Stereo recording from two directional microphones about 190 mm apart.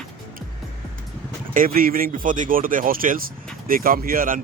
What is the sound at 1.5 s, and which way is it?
Speech, 50° right (ahead or behind).